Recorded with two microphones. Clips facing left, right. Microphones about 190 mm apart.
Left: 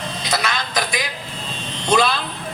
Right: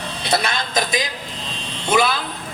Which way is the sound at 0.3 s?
30° right (ahead or behind).